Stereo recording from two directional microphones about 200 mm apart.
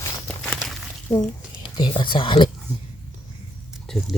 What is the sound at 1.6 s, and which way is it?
Speech, 25° left (ahead or behind).